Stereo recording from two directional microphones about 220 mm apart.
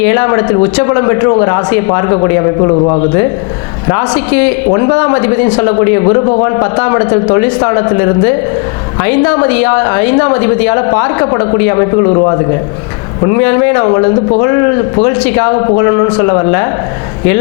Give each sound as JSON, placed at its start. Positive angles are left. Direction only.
{"t": 0.1, "sound": "speech", "side_deg": 20}
{"t": 3.8, "sound": "speech", "side_deg": 20}
{"t": 9.0, "sound": "speech", "side_deg": 20}